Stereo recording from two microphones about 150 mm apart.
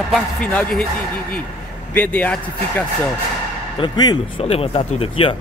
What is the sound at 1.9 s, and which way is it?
Speech, 10° left (ahead or behind).